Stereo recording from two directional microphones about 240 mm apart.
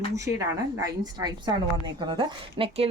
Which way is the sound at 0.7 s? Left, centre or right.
Centre.